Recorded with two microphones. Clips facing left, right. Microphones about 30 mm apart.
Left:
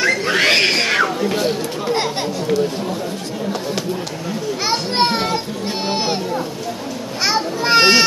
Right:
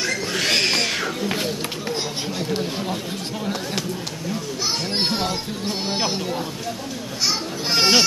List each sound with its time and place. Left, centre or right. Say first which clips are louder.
0.0 s a sound: left 8 dB; left
4.6 s children playing: left 6 dB; left
7.2 s children playing: left 7 dB; left